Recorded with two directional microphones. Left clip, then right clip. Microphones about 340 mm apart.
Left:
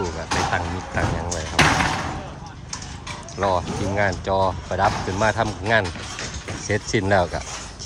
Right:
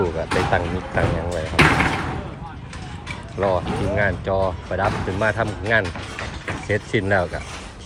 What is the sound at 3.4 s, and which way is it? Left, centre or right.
Speech, centre.